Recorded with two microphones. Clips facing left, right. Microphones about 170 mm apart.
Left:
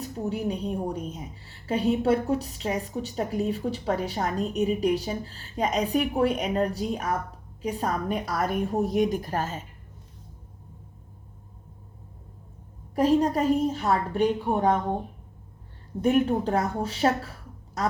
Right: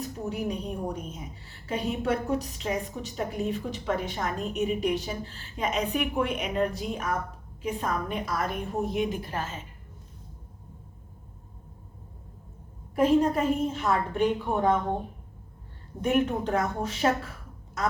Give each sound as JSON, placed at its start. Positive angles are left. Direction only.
{"t": 0.3, "sound": "a woman's voice", "side_deg": 35}
{"t": 13.0, "sound": "a woman's voice", "side_deg": 35}
{"t": 16.0, "sound": "a woman's voice", "side_deg": 35}